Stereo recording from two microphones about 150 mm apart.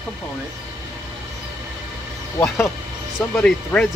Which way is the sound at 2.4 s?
15° left (ahead or behind).